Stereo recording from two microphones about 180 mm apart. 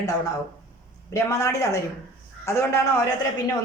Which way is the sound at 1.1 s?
15° left (ahead or behind).